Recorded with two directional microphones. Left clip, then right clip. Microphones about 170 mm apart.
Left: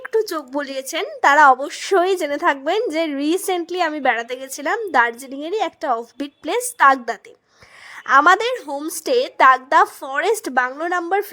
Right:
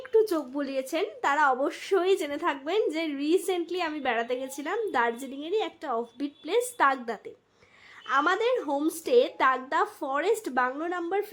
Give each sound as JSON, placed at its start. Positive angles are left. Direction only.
{"t": 0.0, "sound": "speech", "side_deg": 50}